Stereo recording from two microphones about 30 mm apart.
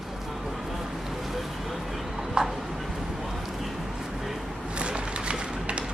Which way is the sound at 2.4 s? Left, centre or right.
Right.